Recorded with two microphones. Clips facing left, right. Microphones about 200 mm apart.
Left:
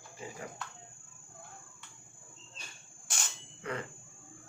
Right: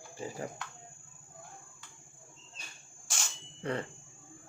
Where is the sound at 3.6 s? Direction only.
35° right (ahead or behind).